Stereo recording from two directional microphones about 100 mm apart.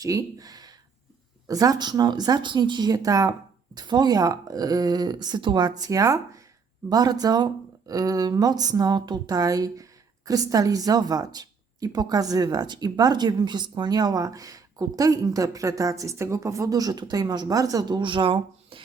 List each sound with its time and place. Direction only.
0.0 s speech: 35° right (ahead or behind); by 18.8 s 60° right (ahead or behind)